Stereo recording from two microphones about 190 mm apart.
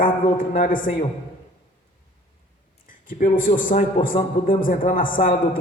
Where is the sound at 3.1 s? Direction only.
45° left (ahead or behind).